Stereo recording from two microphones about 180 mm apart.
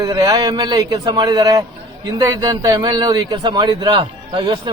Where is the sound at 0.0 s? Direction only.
20° right (ahead or behind).